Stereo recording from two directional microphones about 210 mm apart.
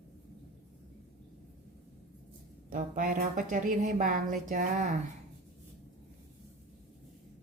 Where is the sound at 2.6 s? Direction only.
40° right (ahead or behind).